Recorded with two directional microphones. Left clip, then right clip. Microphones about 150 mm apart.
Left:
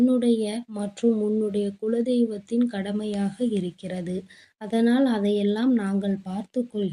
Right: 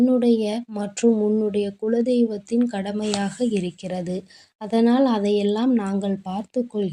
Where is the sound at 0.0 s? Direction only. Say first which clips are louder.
Right 3 dB; 15° right (ahead or behind).